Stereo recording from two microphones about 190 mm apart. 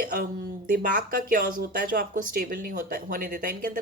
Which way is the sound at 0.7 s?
50° right (ahead or behind).